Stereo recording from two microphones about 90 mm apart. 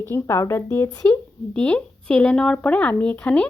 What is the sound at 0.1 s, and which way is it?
Speech, 30° left (ahead or behind).